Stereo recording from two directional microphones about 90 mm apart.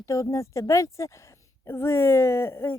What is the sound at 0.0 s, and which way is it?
Speech, 35° left (ahead or behind).